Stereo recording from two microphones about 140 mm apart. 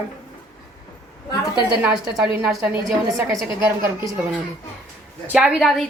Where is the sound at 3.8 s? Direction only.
15° right (ahead or behind).